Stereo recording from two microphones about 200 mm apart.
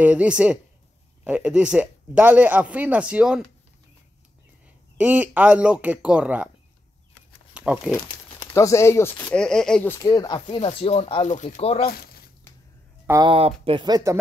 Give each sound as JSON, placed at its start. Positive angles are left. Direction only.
{"t": 0.0, "sound": "a man's voice", "side_deg": -5}
{"t": 4.9, "sound": "a man's voice", "side_deg": -5}
{"t": 7.5, "sound": "speech", "side_deg": -5}
{"t": 8.5, "sound": "speech", "side_deg": 15}
{"t": 10.5, "sound": "speech", "side_deg": 30}
{"t": 11.9, "sound": "a sound", "side_deg": 50}
{"t": 13.0, "sound": "speech", "side_deg": -15}
{"t": 13.3, "sound": "speech", "side_deg": -30}